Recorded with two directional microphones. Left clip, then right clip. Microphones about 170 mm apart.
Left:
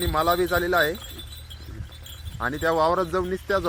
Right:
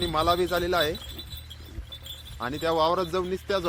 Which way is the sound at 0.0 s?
Centre (ahead or behind).